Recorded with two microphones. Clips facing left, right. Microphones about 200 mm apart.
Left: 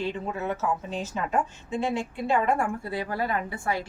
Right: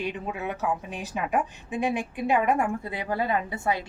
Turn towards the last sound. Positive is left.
turn(degrees=-20)  # may be behind; listen again after turning